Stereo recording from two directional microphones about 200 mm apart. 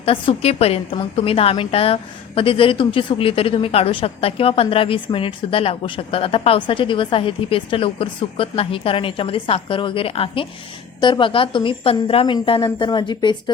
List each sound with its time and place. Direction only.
0.0 s a woman's voice: 30° left (ahead or behind)